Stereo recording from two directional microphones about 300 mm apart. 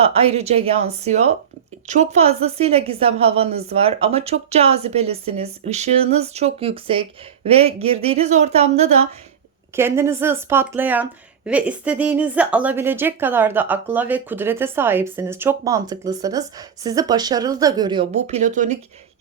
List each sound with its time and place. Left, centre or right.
0.0 s a woman's voice: centre
9.7 s speech: centre; by 18.8 s right